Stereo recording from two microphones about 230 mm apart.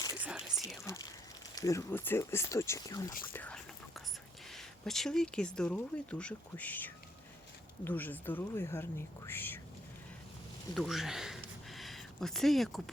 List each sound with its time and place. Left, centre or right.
0.2 s whispering: centre
0.9 s speech: centre
10.8 s speech: centre